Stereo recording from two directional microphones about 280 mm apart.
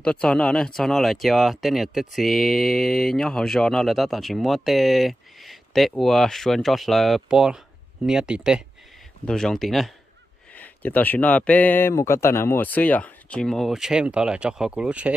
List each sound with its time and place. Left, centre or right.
0.0 s speech: centre